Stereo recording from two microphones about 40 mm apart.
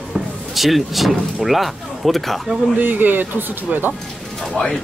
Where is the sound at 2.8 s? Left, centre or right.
Right.